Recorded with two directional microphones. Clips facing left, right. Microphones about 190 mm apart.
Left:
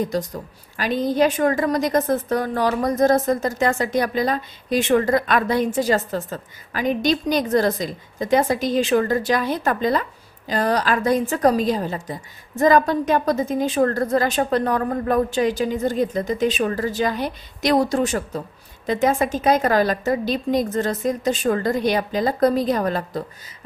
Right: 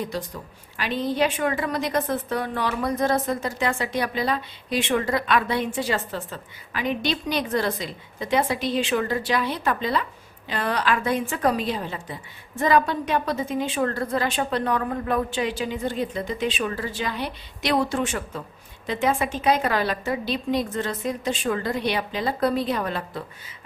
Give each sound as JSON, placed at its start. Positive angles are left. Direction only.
{"t": 0.0, "sound": "a woman's voice", "side_deg": 40}